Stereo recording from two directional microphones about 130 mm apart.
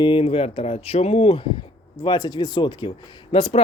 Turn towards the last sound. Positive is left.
turn(degrees=50)  # may be behind; listen again after turning